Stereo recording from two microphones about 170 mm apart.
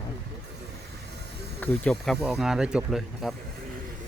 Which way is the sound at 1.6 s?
5° left (ahead or behind).